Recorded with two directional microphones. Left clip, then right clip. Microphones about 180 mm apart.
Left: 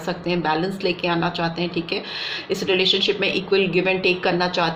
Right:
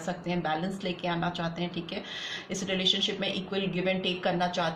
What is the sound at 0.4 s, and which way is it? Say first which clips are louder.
A woman's voice: left 10 dB; 40° left (ahead or behind).